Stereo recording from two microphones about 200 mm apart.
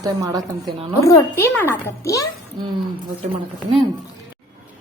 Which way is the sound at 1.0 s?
15° left (ahead or behind).